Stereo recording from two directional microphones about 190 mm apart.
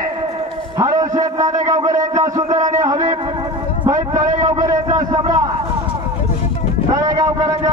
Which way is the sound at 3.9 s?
20° right (ahead or behind).